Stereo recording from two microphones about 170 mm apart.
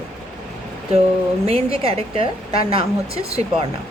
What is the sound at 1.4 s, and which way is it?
A woman's voice, 35° right (ahead or behind).